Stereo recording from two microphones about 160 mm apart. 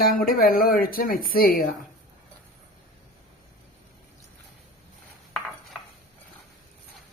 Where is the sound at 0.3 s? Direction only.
60° left (ahead or behind).